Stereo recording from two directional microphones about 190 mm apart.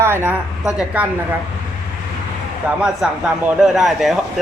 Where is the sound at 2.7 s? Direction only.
5° right (ahead or behind).